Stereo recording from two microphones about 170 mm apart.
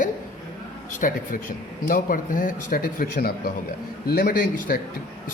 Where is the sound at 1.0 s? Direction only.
55° left (ahead or behind).